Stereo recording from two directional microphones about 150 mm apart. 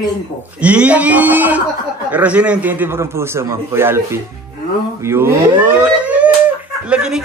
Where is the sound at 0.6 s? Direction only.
10° right (ahead or behind).